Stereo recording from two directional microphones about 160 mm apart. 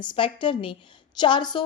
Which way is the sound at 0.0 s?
30° left (ahead or behind).